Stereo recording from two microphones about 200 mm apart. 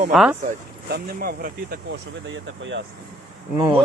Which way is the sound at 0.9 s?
50° right (ahead or behind).